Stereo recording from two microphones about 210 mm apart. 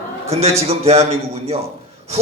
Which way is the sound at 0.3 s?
30° right (ahead or behind).